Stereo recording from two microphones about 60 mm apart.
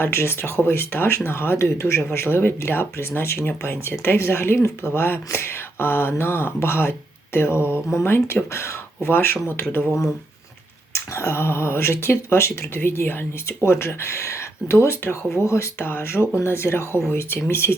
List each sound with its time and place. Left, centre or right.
0.0 s speech: left
9.8 s speech: centre
11.1 s speech: left